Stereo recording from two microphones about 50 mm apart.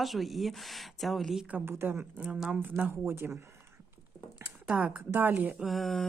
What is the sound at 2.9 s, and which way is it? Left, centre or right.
Speech, right.